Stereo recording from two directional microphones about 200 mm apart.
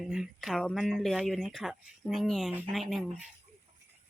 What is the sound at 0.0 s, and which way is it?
Speech, centre (ahead or behind).